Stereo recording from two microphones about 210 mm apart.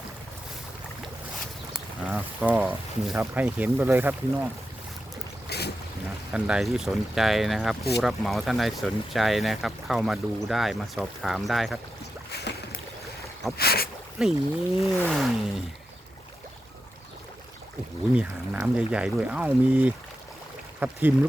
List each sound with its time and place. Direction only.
1.7 s speech: 5° right (ahead or behind)
5.5 s boat: 50° left (ahead or behind)
6.3 s speech: centre (ahead or behind)
13.6 s a sound: 50° left (ahead or behind)
14.2 s speech: 5° right (ahead or behind)
18.1 s speech: 5° right (ahead or behind)